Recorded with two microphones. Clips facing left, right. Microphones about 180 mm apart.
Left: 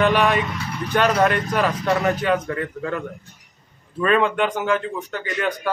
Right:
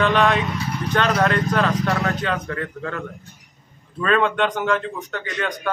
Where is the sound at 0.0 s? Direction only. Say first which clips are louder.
Even; 10° left (ahead or behind).